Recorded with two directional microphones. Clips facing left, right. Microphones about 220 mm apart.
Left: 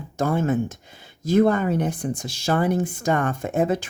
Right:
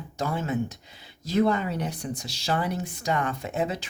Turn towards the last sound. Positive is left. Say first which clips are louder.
# left 7 dB
turn(degrees=50)  # may be behind; listen again after turning